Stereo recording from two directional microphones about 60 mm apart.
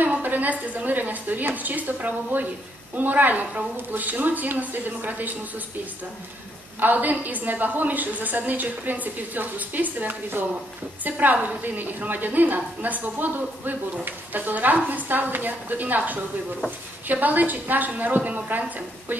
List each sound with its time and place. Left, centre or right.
0.0 s a woman's voice: right
6.8 s a woman's voice: right